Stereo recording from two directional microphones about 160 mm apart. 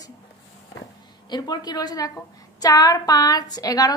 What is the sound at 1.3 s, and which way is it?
A woman's voice, 25° left (ahead or behind).